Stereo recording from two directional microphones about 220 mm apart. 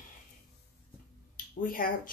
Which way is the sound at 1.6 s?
40° left (ahead or behind).